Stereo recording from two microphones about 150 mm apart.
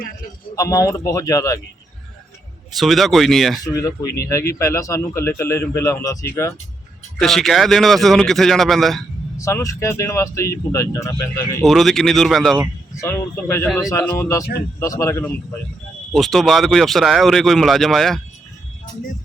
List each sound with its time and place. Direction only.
0.5 s speech: 25° left (ahead or behind)
2.7 s speech: centre (ahead or behind)
3.6 s speech: 20° left (ahead or behind)
4.0 s speech: 90° left
4.3 s speech: 20° left (ahead or behind)
7.2 s speech: centre (ahead or behind)
9.4 s speech: 20° left (ahead or behind)
11.6 s speech: centre (ahead or behind)
13.0 s speech: 15° left (ahead or behind)
13.7 s speech: centre (ahead or behind)
13.9 s speech: 15° left (ahead or behind)
16.1 s speech: centre (ahead or behind)